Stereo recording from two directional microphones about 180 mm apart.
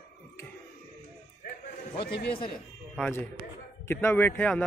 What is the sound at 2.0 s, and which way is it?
Speech, 65° left (ahead or behind).